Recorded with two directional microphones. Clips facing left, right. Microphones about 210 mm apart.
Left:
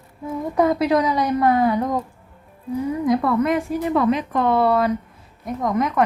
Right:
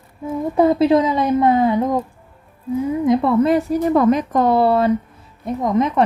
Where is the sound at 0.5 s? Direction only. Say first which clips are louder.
Right 4 dB; 25° right (ahead or behind).